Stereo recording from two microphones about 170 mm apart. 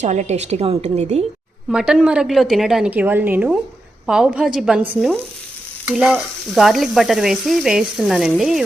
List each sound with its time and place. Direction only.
0.0 s a woman's voice: 45° right (ahead or behind)
1.7 s stir: 5° right (ahead or behind)